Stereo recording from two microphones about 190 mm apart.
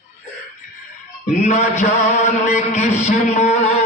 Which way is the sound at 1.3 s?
40° left (ahead or behind).